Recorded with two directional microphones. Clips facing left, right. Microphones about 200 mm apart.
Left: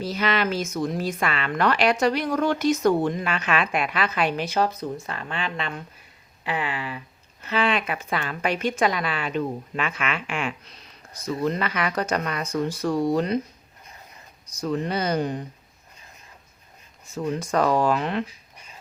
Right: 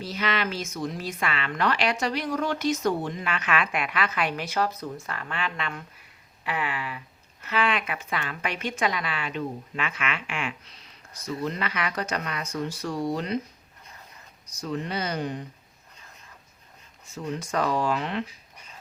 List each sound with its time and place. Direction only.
0.0 s a woman's voice: 40° left (ahead or behind)
3.3 s a woman's voice: 30° left (ahead or behind)
14.6 s a woman's voice: 45° left (ahead or behind)
17.2 s a woman's voice: 50° left (ahead or behind)